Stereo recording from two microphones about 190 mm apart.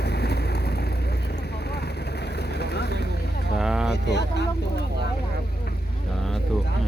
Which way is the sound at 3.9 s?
60° left (ahead or behind).